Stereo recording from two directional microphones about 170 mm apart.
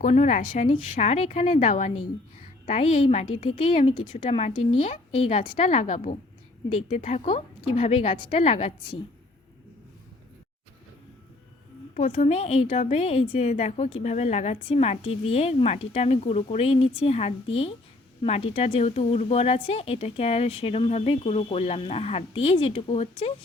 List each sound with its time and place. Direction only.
0.0 s a woman's voice: 45° left (ahead or behind)
11.9 s speech: 40° left (ahead or behind)